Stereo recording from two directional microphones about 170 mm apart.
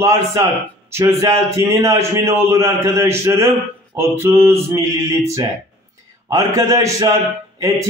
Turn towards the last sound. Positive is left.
turn(degrees=-20)  # may be behind; listen again after turning